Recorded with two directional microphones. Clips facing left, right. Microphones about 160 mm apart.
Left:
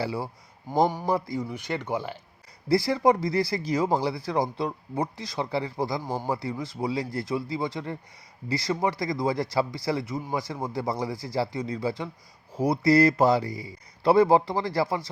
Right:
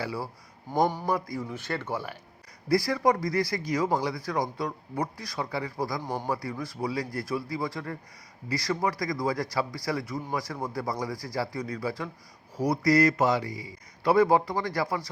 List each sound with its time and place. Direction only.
0.0 s a man's voice: 25° left (ahead or behind)
0.7 s speech: 15° left (ahead or behind)
1.0 s a man's voice: 25° left (ahead or behind)
1.5 s a man's voice: 15° left (ahead or behind)